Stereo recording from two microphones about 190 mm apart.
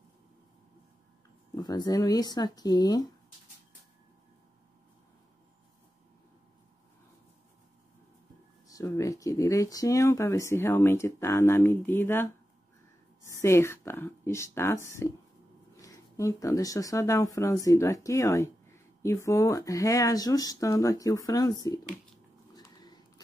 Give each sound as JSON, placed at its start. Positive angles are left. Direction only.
{"t": 1.5, "sound": "speech", "side_deg": 20}
{"t": 8.6, "sound": "speech", "side_deg": 15}
{"t": 22.5, "sound": "a sound", "side_deg": 20}